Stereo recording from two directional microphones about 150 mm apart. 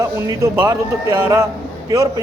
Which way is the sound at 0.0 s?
20° right (ahead or behind).